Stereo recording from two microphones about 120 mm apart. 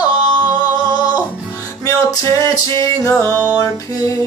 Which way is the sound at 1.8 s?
25° left (ahead or behind).